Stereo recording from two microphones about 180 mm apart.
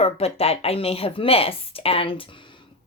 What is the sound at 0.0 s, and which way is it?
A woman's voice, 35° left (ahead or behind).